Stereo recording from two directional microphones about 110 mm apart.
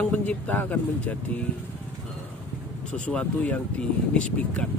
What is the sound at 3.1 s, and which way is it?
Speech, 10° left (ahead or behind).